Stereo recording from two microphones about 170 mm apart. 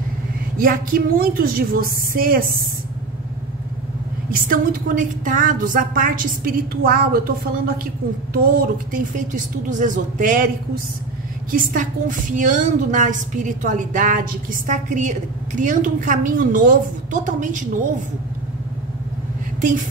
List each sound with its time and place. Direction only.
0.6 s a woman's voice: 55° right (ahead or behind)
4.3 s a woman's voice: 55° right (ahead or behind)